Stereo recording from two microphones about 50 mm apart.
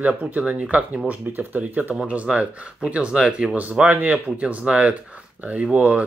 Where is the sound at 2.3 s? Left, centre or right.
Right.